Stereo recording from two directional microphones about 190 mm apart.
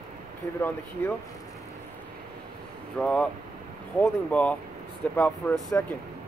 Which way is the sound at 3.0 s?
5° left (ahead or behind).